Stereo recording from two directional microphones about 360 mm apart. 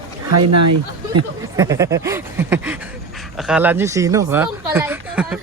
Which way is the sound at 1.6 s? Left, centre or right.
Centre.